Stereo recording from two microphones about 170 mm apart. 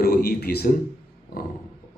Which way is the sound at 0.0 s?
65° left (ahead or behind).